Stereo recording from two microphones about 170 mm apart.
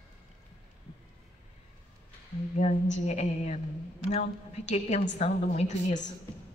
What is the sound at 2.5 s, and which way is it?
A woman's voice, 45° left (ahead or behind).